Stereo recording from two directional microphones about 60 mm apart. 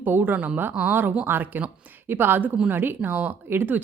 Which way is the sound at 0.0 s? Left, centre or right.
Right.